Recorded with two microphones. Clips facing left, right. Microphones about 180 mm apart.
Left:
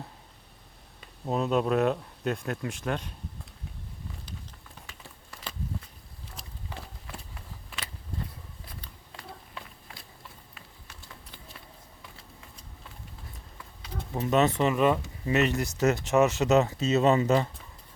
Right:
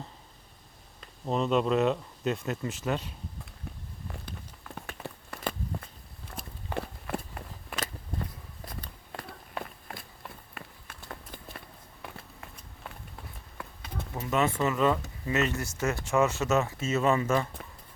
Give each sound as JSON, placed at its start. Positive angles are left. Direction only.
{"t": 1.0, "sound": "speech", "side_deg": 5}
{"t": 4.1, "sound": "a sound", "side_deg": -60}
{"t": 8.6, "sound": "walk", "side_deg": -45}
{"t": 12.0, "sound": "a sound", "side_deg": -60}
{"t": 14.1, "sound": "pigeon", "side_deg": 20}
{"t": 14.6, "sound": "speech", "side_deg": 20}